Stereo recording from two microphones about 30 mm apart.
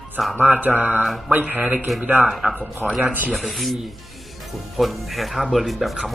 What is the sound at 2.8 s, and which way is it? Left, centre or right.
Speech, centre.